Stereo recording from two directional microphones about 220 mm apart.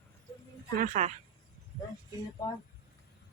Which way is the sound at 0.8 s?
35° right (ahead or behind).